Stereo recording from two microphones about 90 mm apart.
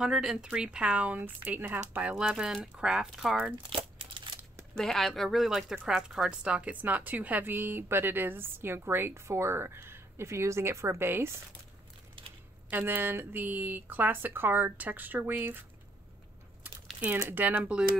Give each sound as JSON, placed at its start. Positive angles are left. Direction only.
{"t": 0.0, "sound": "speech", "side_deg": -10}
{"t": 3.7, "sound": "crumpling", "side_deg": -80}
{"t": 4.7, "sound": "a woman's voice", "side_deg": 5}
{"t": 12.6, "sound": "a woman's voice", "side_deg": -20}
{"t": 17.2, "sound": "a woman's voice", "side_deg": -20}